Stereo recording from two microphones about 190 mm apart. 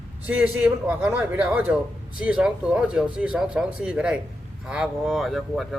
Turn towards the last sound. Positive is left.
turn(degrees=0)  # may be behind; listen again after turning